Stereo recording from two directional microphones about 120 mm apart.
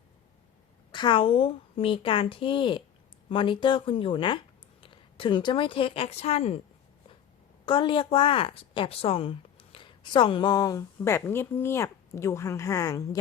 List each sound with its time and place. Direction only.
0.9 s a woman's voice: 40° left (ahead or behind); by 6.6 s 60° left (ahead or behind)
7.6 s a woman's voice: 40° left (ahead or behind); by 13.1 s 25° left (ahead or behind)